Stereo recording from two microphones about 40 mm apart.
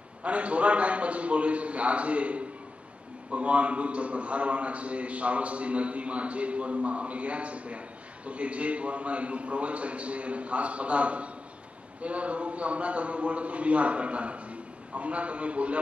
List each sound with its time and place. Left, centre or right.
0.2 s a man's voice: right